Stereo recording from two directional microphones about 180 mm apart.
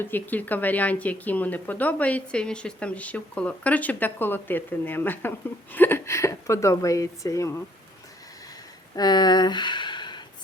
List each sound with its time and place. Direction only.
0.0 s speech: 10° left (ahead or behind)
9.0 s speech: 25° left (ahead or behind)